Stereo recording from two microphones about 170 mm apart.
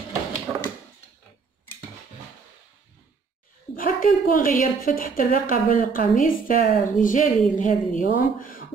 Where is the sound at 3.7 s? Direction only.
55° left (ahead or behind).